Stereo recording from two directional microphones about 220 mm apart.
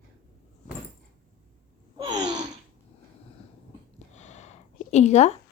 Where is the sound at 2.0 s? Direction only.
20° right (ahead or behind).